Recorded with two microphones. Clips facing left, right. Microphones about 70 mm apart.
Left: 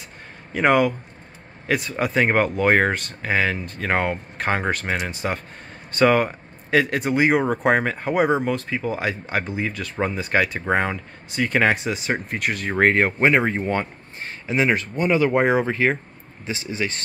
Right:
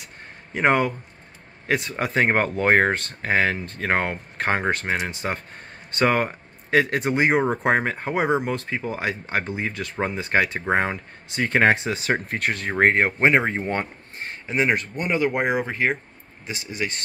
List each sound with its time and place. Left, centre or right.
0.5 s speech: right
11.9 s speech: right
12.4 s speech: right; by 17.0 s centre